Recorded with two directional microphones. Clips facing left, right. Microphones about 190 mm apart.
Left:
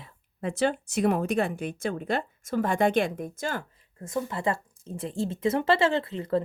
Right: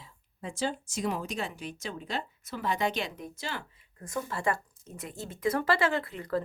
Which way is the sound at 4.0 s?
20° left (ahead or behind).